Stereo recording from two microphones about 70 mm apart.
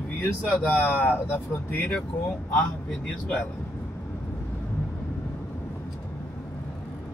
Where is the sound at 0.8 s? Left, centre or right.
Left.